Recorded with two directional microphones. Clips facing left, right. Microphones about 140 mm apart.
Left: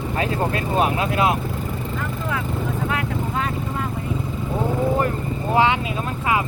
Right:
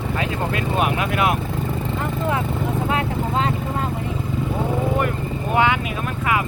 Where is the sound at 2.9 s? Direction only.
25° right (ahead or behind).